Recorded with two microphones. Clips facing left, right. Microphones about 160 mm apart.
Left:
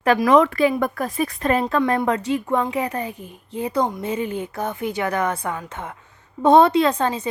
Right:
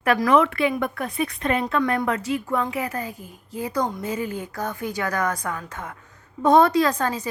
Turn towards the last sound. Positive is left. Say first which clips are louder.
# left 2 dB
turn(degrees=25)  # may be behind; listen again after turning